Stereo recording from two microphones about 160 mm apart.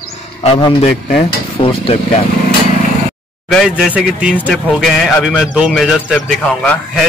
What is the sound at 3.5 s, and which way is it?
A man's voice, 5° left (ahead or behind).